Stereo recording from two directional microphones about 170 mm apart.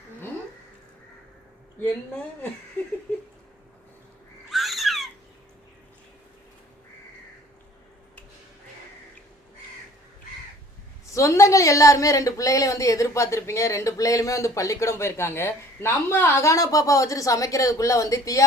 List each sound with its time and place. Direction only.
1.8 s speech: 10° left (ahead or behind)
4.4 s a sound: centre (ahead or behind)
11.1 s a woman's voice: 20° left (ahead or behind)